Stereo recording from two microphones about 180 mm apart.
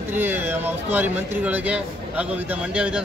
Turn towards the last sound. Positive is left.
turn(degrees=-5)  # may be behind; listen again after turning